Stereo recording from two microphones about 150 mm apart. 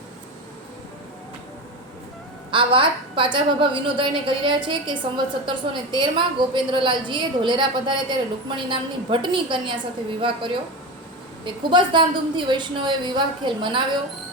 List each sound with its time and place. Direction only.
2.5 s a woman's voice: 35° right (ahead or behind)